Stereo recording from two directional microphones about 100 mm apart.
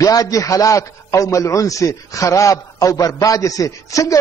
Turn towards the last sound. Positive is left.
turn(degrees=35)  # may be behind; listen again after turning